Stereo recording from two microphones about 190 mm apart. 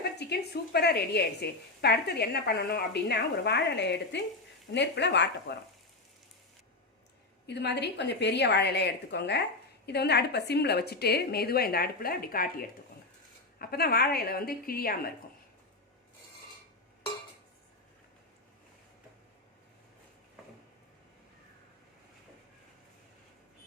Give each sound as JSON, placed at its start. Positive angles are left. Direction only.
{"t": 0.2, "sound": "a woman's voice", "side_deg": 60}
{"t": 7.4, "sound": "a woman's voice", "side_deg": 65}